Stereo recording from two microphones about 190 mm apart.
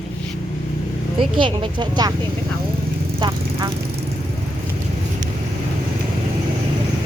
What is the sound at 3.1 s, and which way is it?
Vehicle, 25° right (ahead or behind).